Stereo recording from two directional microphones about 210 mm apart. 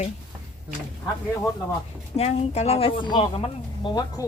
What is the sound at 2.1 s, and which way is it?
Speech, 30° left (ahead or behind).